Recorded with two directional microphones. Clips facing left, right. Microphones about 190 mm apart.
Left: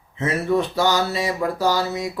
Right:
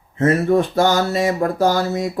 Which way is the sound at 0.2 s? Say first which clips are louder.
Right 5 dB; 50° right (ahead or behind).